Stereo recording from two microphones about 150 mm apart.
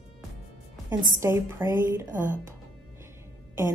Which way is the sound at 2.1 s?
60° right (ahead or behind).